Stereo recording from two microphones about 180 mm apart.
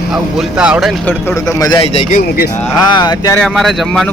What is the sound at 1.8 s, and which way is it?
Speech, 35° left (ahead or behind).